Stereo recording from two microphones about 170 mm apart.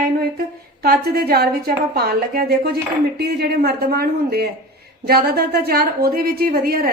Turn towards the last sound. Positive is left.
turn(degrees=-60)  # may be behind; listen again after turning